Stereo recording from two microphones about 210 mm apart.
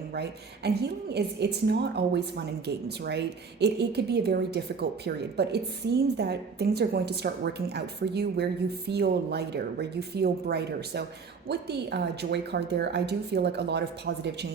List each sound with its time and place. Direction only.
0.1 s a woman's voice: 50° right (ahead or behind)